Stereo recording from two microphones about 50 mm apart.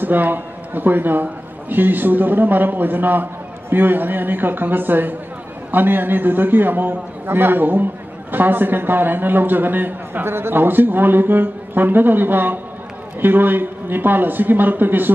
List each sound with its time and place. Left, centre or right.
0.0 s a man's voice: right